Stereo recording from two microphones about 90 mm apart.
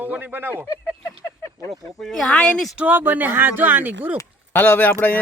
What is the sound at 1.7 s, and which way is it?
Speech, 5° left (ahead or behind).